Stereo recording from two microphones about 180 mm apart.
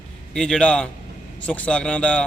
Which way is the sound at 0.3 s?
5° left (ahead or behind).